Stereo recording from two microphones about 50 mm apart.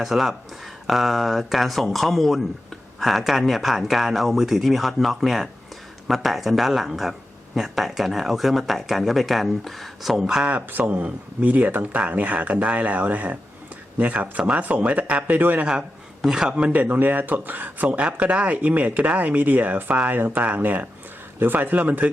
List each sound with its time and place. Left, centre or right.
0.0 s speech: centre
10.2 s a man's voice: centre
10.7 s speech: right
16.2 s a man's voice: centre
16.8 s speech: right